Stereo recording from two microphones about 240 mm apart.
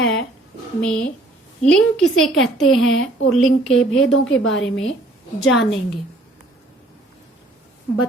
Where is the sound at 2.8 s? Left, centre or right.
Left.